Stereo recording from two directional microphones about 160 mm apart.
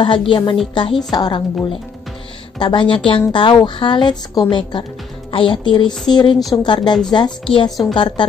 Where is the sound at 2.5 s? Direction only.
30° left (ahead or behind).